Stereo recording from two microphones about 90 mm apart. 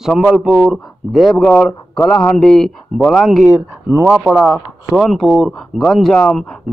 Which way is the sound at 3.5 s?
30° right (ahead or behind).